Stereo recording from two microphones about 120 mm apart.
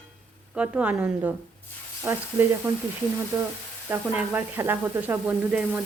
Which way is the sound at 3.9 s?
15° right (ahead or behind).